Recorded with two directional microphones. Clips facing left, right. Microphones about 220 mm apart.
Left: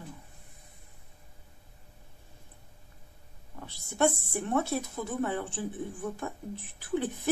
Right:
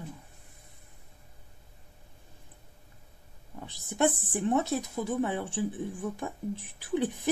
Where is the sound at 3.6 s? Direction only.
15° right (ahead or behind).